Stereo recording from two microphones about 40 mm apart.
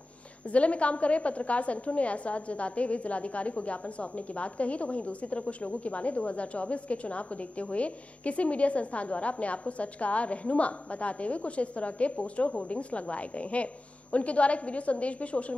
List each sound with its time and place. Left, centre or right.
0.5 s a woman's voice: left